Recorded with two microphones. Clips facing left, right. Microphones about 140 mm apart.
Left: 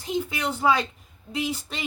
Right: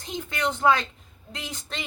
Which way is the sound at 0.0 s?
5° left (ahead or behind).